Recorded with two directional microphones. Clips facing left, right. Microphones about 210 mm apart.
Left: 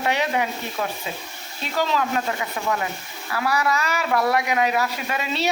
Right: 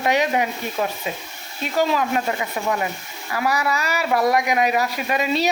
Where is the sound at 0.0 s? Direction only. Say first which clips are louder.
Right 3 dB; 15° right (ahead or behind).